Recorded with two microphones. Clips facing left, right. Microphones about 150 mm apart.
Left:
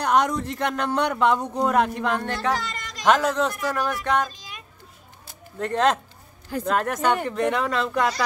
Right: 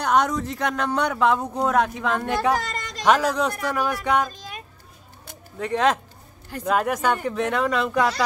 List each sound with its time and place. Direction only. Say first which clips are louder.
0.0 s speech: even; centre (ahead or behind)
4.3 s a sound: right 5 dB; 50° right (ahead or behind)
5.6 s speech: even; centre (ahead or behind)